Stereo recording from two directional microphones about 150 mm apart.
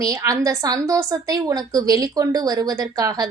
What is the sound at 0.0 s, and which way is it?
A woman's voice, 25° right (ahead or behind).